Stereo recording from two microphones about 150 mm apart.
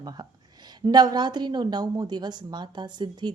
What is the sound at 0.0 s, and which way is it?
A woman's voice, 25° right (ahead or behind).